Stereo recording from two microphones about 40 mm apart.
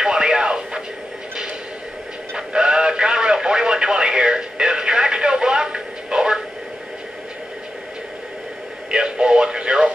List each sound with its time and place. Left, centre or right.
0.0 s radio: centre
2.3 s radio: right
8.9 s music: centre